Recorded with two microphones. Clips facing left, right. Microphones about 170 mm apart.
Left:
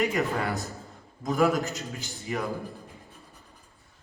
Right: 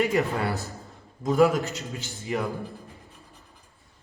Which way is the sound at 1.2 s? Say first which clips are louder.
Right 4 dB; 30° right (ahead or behind).